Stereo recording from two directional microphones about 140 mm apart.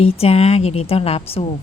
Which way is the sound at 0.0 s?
45° left (ahead or behind).